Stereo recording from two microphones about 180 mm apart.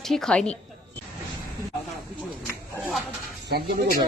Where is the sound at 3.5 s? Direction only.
60° right (ahead or behind).